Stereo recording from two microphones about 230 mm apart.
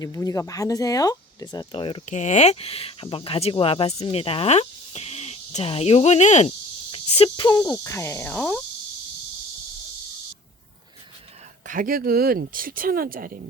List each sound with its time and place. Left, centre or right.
0.0 s speech: centre; by 6.5 s left
6.9 s cricket: left; by 8.6 s centre
11.6 s speech: right